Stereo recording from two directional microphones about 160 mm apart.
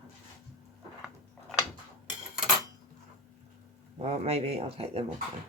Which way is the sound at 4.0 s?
40° right (ahead or behind).